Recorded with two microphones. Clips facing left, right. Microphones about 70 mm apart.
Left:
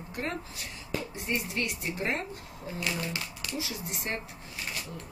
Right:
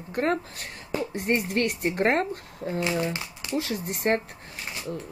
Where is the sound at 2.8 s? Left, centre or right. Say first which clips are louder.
Right 5 dB; right.